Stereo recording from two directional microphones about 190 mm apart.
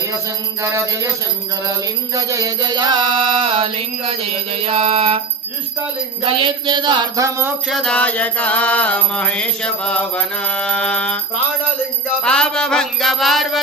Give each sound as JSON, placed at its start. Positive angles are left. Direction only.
{"t": 0.6, "sound": "music", "side_deg": -15}
{"t": 2.1, "sound": "music", "side_deg": -15}
{"t": 6.2, "sound": "music", "side_deg": -25}
{"t": 7.7, "sound": "music", "side_deg": 5}
{"t": 12.2, "sound": "music", "side_deg": 5}